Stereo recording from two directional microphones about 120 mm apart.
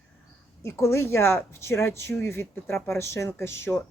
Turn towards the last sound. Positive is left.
turn(degrees=20)  # may be behind; listen again after turning